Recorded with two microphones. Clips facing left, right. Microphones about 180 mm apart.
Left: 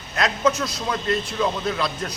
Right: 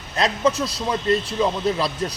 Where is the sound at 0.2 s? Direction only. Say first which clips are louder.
Right 1 dB; 30° right (ahead or behind).